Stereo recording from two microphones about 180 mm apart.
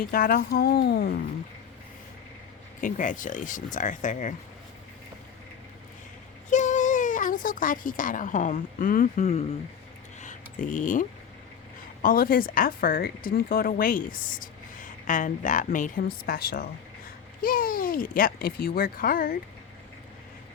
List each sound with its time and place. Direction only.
0.0 s speech: 55° left (ahead or behind)
2.8 s speech: 45° left (ahead or behind)
6.5 s speech: 45° left (ahead or behind)
10.2 s a sound: 45° left (ahead or behind)
12.0 s speech: 55° left (ahead or behind)